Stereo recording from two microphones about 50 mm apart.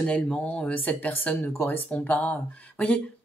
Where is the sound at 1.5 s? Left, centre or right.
Left.